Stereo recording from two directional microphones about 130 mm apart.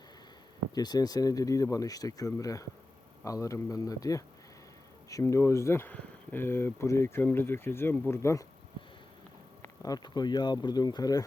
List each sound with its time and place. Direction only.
0.7 s speech: 30° left (ahead or behind)
9.6 s speech: 30° left (ahead or behind)